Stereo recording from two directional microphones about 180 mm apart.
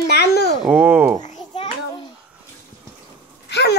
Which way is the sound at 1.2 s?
40° left (ahead or behind).